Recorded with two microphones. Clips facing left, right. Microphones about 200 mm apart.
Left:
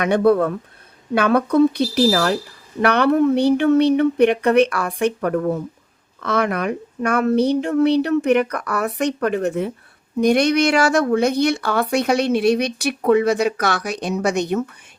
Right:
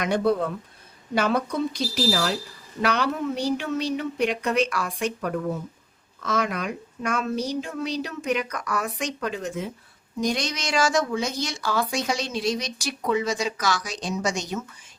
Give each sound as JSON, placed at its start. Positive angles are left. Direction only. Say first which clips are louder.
{"t": 0.0, "sound": "speech", "louder": "left 7 dB", "side_deg": 60}